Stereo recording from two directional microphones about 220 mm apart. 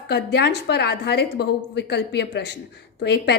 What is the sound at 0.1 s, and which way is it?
A woman's voice, 50° left (ahead or behind).